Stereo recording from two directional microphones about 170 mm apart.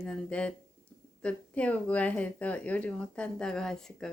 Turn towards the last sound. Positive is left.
turn(degrees=5)  # may be behind; listen again after turning